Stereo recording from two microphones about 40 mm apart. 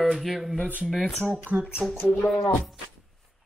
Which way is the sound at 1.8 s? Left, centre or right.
Centre.